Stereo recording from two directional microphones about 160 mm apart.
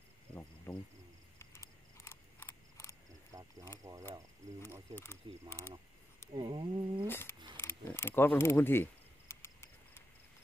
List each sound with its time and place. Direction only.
0.3 s insect: 10° left (ahead or behind)
1.4 s a sound: 15° left (ahead or behind)
3.3 s cricket: 20° right (ahead or behind)
4.9 s speech: 15° left (ahead or behind)
6.3 s a sound: 30° right (ahead or behind)
7.1 s speech: 15° left (ahead or behind)
9.3 s cricket: 15° left (ahead or behind)